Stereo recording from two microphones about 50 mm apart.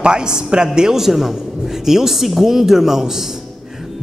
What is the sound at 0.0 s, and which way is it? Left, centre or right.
A man's voice, centre.